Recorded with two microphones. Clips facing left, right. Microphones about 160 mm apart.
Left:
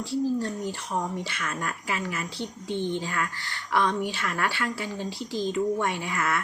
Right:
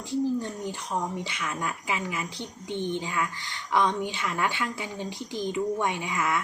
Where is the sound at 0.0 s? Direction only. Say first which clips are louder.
Left 1 dB; 20° right (ahead or behind).